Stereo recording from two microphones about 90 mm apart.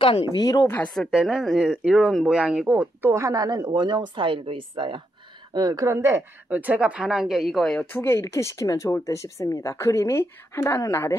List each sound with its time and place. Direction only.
0.0 s speech: 80° left
0.4 s speech: 45° left (ahead or behind)
1.1 s speech: centre (ahead or behind); by 3.1 s 15° right (ahead or behind)
3.1 s a woman's voice: 35° right (ahead or behind); by 5.0 s 70° right (ahead or behind)
5.5 s a woman's voice: 45° right (ahead or behind)
5.9 s a woman's voice: 30° right (ahead or behind)
6.5 s speech: 15° right (ahead or behind); by 7.8 s 5° left (ahead or behind)
7.9 s speech: 25° left (ahead or behind)